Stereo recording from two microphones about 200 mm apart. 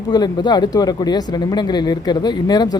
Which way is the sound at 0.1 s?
20° left (ahead or behind).